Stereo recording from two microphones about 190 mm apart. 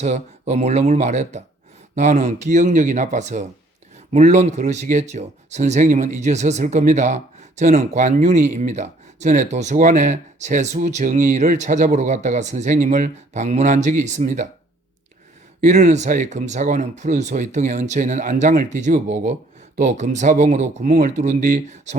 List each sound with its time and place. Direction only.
0.0 s speech: 35° right (ahead or behind)
15.6 s speech: 40° right (ahead or behind)